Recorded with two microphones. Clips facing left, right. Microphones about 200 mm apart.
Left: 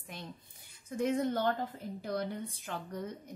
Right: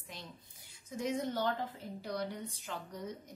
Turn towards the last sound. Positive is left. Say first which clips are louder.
# left 3 dB
turn(degrees=55)  # may be behind; listen again after turning